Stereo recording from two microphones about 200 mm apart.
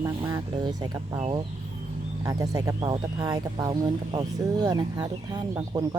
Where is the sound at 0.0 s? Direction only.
20° right (ahead or behind).